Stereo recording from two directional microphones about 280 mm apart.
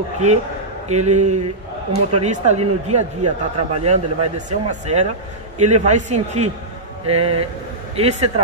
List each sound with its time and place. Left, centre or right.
0.2 s speech: right